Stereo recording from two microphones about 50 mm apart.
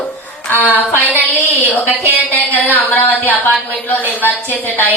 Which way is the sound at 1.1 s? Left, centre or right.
Right.